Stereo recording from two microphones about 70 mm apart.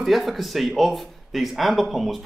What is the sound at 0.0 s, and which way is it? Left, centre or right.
Speech, centre.